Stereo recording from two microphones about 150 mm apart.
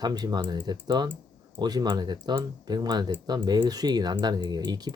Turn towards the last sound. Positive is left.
turn(degrees=-30)  # may be behind; listen again after turning